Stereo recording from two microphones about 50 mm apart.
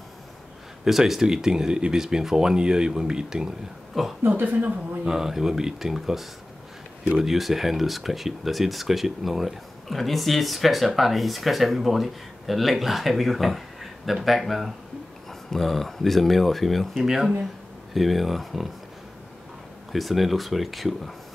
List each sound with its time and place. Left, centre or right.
0.8 s speech: centre
3.9 s speech: centre
4.3 s speech: right
5.0 s speech: centre
19.9 s speech: centre